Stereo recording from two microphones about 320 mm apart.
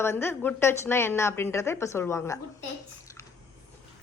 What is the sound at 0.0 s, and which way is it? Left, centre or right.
A woman's voice, centre.